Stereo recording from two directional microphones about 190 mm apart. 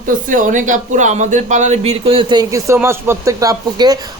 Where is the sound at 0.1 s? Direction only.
45° right (ahead or behind).